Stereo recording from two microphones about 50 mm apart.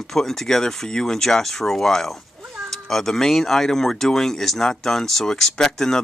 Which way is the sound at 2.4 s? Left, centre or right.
Centre.